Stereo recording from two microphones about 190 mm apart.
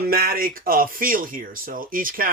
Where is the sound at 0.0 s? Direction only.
50° right (ahead or behind).